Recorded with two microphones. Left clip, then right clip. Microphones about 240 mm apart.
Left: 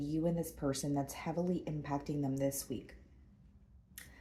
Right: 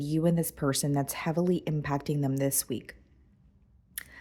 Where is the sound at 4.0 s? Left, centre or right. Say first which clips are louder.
Right 11 dB; right.